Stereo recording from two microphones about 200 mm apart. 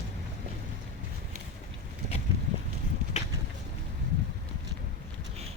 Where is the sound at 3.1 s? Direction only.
35° left (ahead or behind).